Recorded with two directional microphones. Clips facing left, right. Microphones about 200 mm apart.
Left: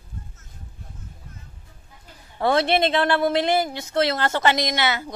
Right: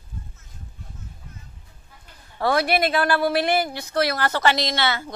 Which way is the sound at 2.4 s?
25° left (ahead or behind).